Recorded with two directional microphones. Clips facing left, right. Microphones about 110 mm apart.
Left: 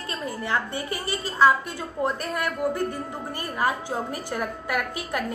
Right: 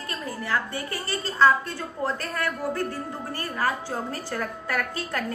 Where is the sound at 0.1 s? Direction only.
20° left (ahead or behind).